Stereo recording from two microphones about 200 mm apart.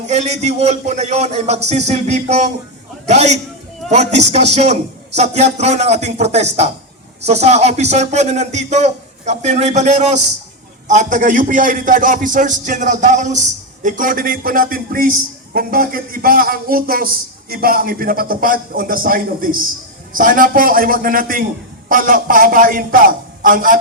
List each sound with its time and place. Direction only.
0.1 s a man's voice: 35° right (ahead or behind)